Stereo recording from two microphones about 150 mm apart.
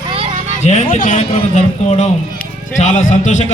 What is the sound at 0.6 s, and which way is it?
A man's voice, 50° left (ahead or behind).